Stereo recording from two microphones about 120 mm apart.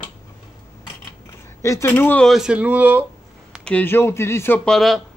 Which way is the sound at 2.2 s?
Centre (ahead or behind).